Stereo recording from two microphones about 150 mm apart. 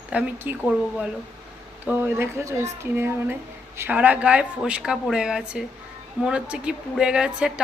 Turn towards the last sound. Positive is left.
turn(degrees=-5)  # may be behind; listen again after turning